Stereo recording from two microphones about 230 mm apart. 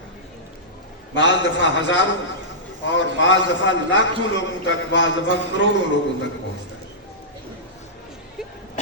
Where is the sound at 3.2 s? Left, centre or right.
Left.